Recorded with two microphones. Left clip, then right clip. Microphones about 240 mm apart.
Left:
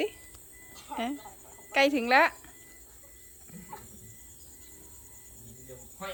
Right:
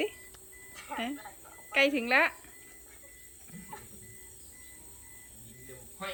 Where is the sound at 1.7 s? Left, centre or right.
Centre.